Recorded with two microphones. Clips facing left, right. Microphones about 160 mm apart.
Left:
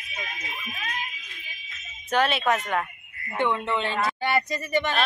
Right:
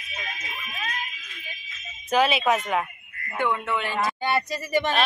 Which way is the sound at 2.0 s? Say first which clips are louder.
Right 2 dB; 5° right (ahead or behind).